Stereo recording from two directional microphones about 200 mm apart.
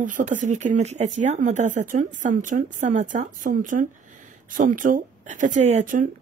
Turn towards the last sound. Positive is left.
turn(degrees=-40)  # may be behind; listen again after turning